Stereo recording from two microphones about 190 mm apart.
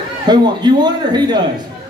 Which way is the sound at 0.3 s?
20° right (ahead or behind).